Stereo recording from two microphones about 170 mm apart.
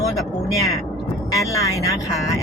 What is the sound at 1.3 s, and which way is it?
Speech, 20° left (ahead or behind).